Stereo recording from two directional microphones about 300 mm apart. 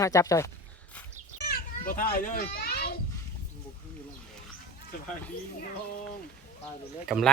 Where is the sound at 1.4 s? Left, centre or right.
Left.